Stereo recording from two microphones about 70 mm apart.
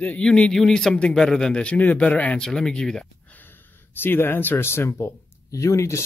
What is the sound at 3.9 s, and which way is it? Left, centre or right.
Speech, left.